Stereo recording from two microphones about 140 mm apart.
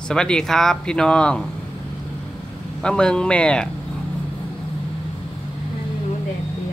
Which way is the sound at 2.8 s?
5° left (ahead or behind).